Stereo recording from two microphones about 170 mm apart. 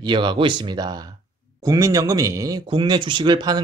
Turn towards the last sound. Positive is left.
turn(degrees=-25)  # may be behind; listen again after turning